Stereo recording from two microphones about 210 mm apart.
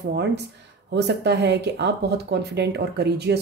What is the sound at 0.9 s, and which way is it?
Speech, 55° right (ahead or behind).